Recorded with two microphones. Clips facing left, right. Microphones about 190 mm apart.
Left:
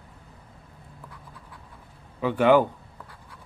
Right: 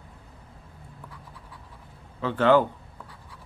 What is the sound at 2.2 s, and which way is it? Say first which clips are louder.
Speech: left 1 dB; 15° left (ahead or behind).